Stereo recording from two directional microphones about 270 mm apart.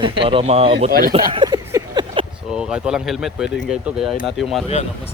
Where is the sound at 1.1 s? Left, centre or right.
Centre.